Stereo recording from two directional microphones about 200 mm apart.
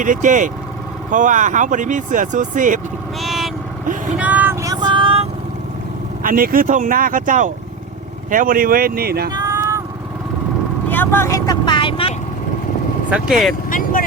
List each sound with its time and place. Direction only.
0.0 s speech: 40° right (ahead or behind)
3.2 s vehicle: centre (ahead or behind); by 5.3 s 30° right (ahead or behind)
6.2 s speech: 45° right (ahead or behind)
9.3 s vehicle: 15° right (ahead or behind)
10.8 s vehicle: 10° left (ahead or behind); by 12.1 s 25° left (ahead or behind)
13.1 s speech: 5° right (ahead or behind)
13.7 s vehicle: 45° left (ahead or behind)